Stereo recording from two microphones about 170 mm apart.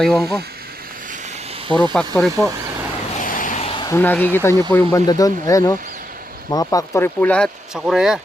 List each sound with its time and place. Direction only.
0.0 s speech: centre (ahead or behind)
1.9 s speech: 5° left (ahead or behind)
3.2 s vehicle: 50° left (ahead or behind); by 3.8 s 35° left (ahead or behind)
3.8 s speech: 10° left (ahead or behind); by 8.2 s 5° right (ahead or behind)